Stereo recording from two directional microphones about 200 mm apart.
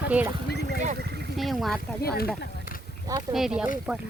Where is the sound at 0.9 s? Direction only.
55° right (ahead or behind).